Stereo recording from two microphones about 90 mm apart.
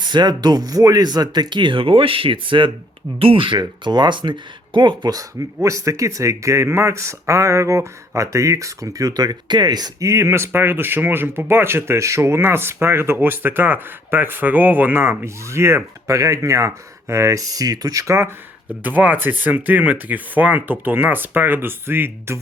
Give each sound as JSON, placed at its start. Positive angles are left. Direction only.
{"t": 0.0, "sound": "speech", "side_deg": -55}
{"t": 3.2, "sound": "speech", "side_deg": -85}
{"t": 5.6, "sound": "speech", "side_deg": -35}
{"t": 17.5, "sound": "speech", "side_deg": -45}
{"t": 18.8, "sound": "speech", "side_deg": -20}